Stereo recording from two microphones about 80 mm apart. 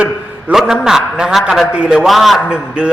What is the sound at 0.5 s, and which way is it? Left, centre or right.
A man's voice, centre.